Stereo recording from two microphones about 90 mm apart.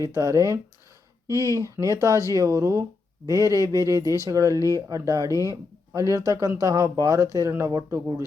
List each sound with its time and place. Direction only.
0.0 s speech: 40° right (ahead or behind)